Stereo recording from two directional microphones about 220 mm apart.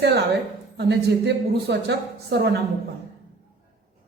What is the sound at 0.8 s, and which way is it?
A woman's voice, 50° right (ahead or behind).